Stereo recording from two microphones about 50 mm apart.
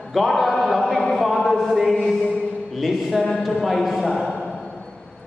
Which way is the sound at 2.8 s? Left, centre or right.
Centre.